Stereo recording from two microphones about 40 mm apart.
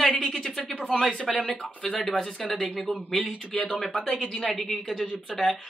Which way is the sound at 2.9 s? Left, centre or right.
Left.